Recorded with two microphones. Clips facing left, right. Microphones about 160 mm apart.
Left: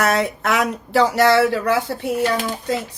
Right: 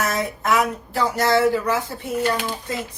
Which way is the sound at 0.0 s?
70° left (ahead or behind).